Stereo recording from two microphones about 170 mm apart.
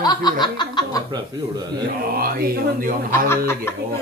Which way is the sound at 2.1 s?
60° right (ahead or behind).